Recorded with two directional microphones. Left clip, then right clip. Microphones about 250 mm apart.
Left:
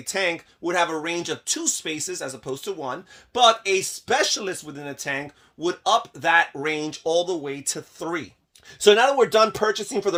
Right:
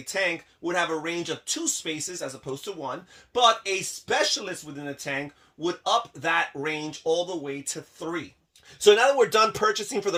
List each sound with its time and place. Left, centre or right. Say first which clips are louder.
0.0 s speech: left 2 dB; left